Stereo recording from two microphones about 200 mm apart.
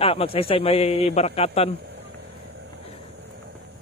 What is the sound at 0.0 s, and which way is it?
A man's voice, 30° left (ahead or behind).